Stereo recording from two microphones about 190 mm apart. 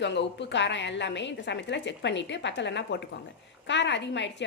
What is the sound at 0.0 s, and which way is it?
A woman's voice, 65° left (ahead or behind).